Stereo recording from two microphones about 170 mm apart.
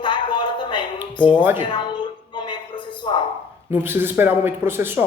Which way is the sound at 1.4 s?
10° right (ahead or behind).